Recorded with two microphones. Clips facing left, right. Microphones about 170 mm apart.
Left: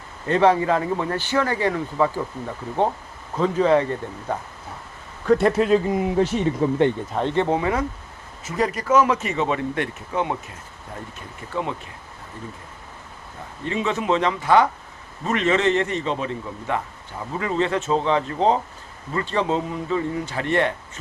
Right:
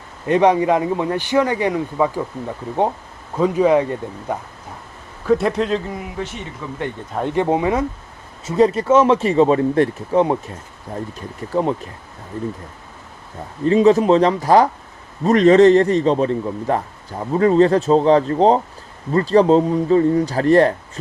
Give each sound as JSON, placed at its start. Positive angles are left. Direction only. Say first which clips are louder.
{"t": 0.3, "sound": "a man's voice", "louder": "right 3 dB", "side_deg": -15}
{"t": 3.3, "sound": "a man's voice", "louder": "right 3 dB", "side_deg": -10}
{"t": 5.2, "sound": "speech", "louder": "even", "side_deg": 0}
{"t": 6.1, "sound": "speech", "louder": "left 9 dB", "side_deg": 35}
{"t": 7.1, "sound": "a man's voice", "louder": "right 3 dB", "side_deg": -10}
{"t": 11.5, "sound": "a man's voice", "louder": "right 8 dB", "side_deg": -35}
{"t": 13.7, "sound": "a man's voice", "louder": "right 10 dB", "side_deg": -35}